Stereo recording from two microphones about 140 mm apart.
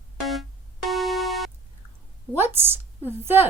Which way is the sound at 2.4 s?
15° right (ahead or behind).